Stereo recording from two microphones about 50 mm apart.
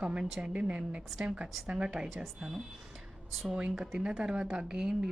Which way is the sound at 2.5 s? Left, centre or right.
Centre.